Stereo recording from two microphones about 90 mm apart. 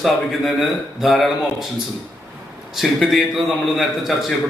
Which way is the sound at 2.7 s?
Centre (ahead or behind).